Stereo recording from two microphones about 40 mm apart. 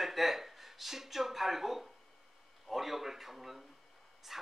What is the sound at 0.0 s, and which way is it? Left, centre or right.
Speech, centre.